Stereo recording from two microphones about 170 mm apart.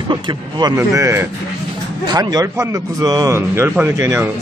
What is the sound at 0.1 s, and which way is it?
Speech, 25° right (ahead or behind).